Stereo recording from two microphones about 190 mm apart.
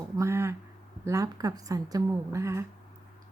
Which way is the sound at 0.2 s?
15° right (ahead or behind).